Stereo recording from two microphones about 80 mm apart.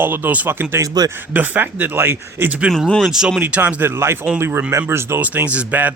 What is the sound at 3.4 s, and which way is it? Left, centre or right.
Speech, centre.